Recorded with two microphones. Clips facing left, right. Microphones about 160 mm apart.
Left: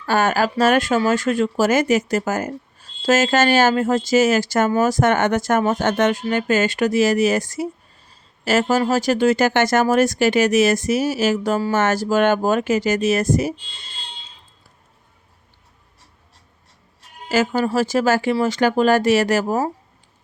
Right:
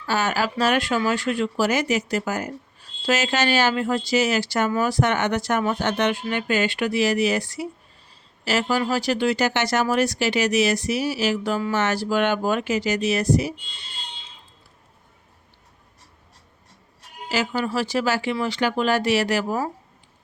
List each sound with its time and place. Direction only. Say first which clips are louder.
0.0 s speech: left 5 dB; 50° left (ahead or behind)
17.2 s speech: left 6 dB; 45° left (ahead or behind)